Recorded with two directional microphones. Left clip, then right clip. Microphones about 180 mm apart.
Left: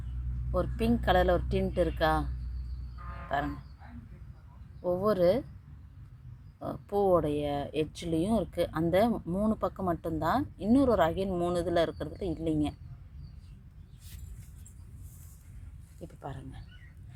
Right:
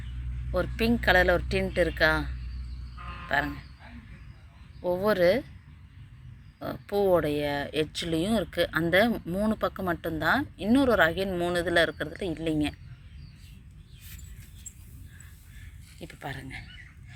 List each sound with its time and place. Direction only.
0.6 s speech: centre (ahead or behind)
3.2 s speech: centre (ahead or behind)
4.8 s speech: centre (ahead or behind)
6.6 s speech: centre (ahead or behind)
16.0 s speech: centre (ahead or behind)